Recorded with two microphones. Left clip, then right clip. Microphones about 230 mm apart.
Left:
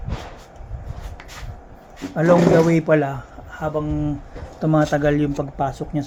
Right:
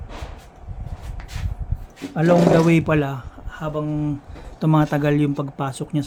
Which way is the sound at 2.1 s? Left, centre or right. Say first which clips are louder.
Left 1 dB; right.